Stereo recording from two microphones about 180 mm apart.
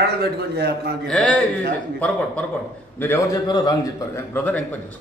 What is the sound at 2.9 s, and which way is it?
Speech, 15° left (ahead or behind).